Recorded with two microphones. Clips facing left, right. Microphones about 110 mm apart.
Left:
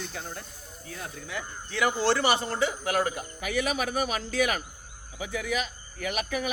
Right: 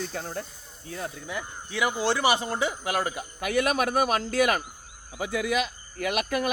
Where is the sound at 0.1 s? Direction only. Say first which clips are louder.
Right 5 dB; 35° right (ahead or behind).